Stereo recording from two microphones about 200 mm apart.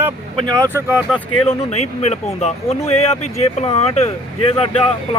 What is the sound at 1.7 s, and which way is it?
Speech, 35° left (ahead or behind).